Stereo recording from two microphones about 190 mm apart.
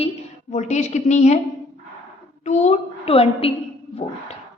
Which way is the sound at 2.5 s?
35° left (ahead or behind).